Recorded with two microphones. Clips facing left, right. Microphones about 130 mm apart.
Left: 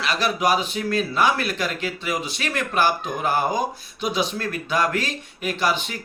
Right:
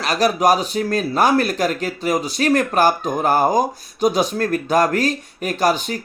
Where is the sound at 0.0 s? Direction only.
40° right (ahead or behind).